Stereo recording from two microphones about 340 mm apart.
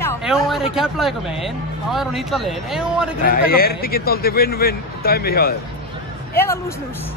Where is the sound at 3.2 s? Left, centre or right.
Left.